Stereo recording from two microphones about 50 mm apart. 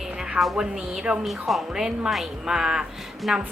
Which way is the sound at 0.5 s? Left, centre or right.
Centre.